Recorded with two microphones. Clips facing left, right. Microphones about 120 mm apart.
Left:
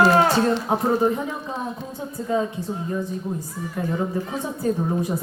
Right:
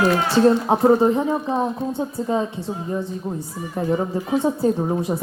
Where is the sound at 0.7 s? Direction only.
25° right (ahead or behind).